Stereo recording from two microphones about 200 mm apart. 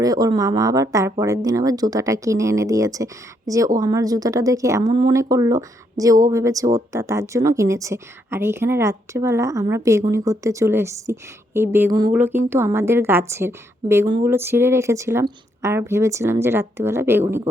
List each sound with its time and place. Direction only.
0.0 s a woman's voice: 20° right (ahead or behind)
11.9 s a sound: 20° right (ahead or behind)
12.1 s a woman's voice: 10° right (ahead or behind)